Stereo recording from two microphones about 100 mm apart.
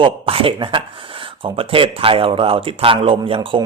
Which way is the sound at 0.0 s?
65° right (ahead or behind).